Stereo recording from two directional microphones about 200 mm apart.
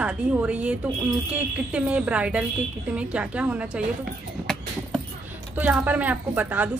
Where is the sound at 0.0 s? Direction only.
5° right (ahead or behind).